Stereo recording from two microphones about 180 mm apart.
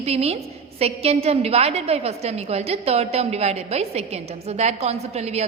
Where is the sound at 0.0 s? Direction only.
35° right (ahead or behind).